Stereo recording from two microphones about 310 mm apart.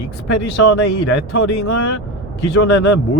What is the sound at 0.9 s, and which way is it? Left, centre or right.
Speech, left.